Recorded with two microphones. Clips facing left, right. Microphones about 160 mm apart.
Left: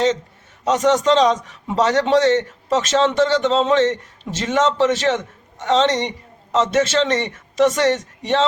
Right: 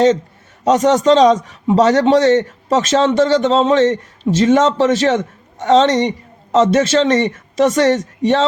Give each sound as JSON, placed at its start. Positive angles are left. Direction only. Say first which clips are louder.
{"t": 0.6, "sound": "a man's voice", "louder": "right 4 dB", "side_deg": -35}